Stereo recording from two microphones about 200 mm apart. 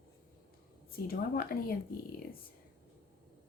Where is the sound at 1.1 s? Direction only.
50° left (ahead or behind).